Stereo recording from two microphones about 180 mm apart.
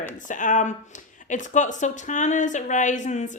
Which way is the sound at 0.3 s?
45° left (ahead or behind).